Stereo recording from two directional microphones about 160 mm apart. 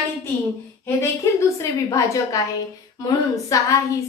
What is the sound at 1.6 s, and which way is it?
A woman's voice, 20° left (ahead or behind).